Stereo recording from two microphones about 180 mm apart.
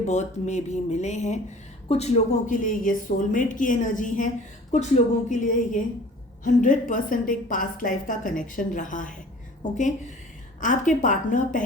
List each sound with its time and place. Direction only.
0.0 s a woman's voice: 40° left (ahead or behind)